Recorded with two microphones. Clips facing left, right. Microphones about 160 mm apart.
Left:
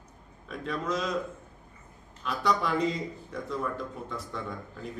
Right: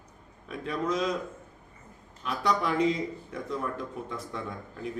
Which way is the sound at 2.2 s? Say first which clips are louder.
Even; centre (ahead or behind).